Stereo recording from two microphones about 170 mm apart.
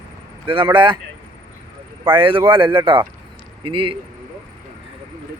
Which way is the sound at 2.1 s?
30° right (ahead or behind).